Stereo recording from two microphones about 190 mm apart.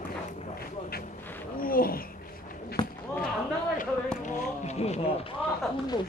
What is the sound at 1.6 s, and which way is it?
Speech, 50° left (ahead or behind).